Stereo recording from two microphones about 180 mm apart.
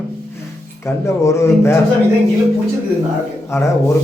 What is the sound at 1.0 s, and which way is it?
Speech, 15° left (ahead or behind).